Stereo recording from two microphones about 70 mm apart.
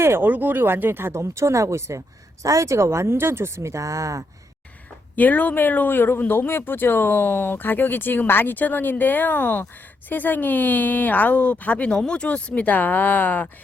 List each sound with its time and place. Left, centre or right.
0.0 s speech: right
5.1 s speech: left
11.9 s speech: centre